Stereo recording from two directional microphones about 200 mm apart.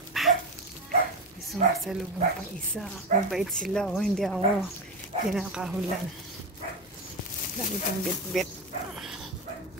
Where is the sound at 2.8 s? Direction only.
Centre (ahead or behind).